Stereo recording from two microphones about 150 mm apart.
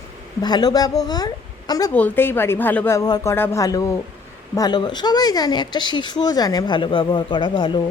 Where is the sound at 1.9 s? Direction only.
10° left (ahead or behind).